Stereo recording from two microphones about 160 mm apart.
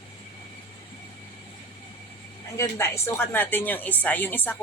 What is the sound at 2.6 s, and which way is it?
Speech, 15° left (ahead or behind).